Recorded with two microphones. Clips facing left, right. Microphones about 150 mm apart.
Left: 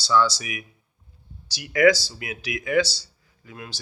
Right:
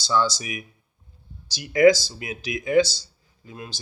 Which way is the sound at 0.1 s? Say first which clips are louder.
Left 2 dB; 25° right (ahead or behind).